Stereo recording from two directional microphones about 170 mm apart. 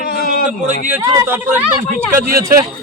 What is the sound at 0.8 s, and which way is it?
Speech, 15° right (ahead or behind).